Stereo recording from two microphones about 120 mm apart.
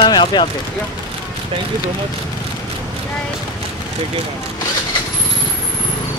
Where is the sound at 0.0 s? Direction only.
40° left (ahead or behind).